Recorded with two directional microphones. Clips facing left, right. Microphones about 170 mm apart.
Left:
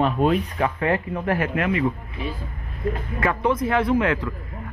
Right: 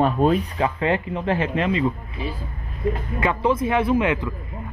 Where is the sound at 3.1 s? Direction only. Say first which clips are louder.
Even; 25° right (ahead or behind).